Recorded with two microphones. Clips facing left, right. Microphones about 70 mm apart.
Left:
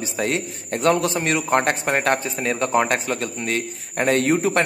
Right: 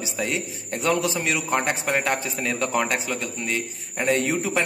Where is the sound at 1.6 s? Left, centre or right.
Left.